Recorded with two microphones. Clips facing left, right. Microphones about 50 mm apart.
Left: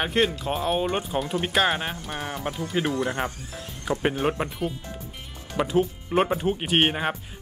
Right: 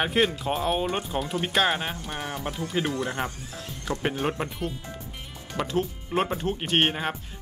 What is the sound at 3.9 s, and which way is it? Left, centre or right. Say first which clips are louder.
Speech: left 3 dB; centre.